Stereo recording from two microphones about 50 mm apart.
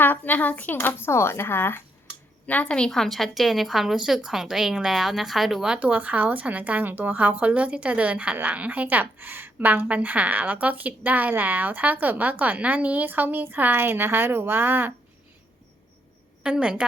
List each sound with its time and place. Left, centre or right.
0.0 s speech: left
1.0 s speech: left
2.5 s speech: left
2.9 s a woman's voice: centre
5.8 s a woman's voice: right
16.4 s a woman's voice: right